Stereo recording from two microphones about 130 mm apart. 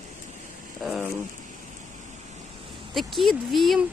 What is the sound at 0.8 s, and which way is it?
Speech, centre (ahead or behind).